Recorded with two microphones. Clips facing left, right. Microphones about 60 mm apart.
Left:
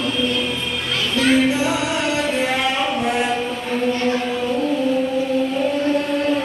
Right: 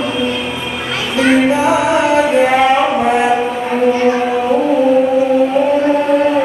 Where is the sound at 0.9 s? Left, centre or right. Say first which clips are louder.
Right 5 dB; centre.